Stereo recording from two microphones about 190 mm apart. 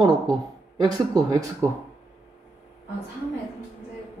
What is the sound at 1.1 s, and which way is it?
Speech, 15° right (ahead or behind).